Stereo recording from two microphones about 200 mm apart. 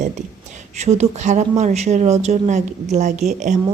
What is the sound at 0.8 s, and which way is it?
Speech, 35° right (ahead or behind).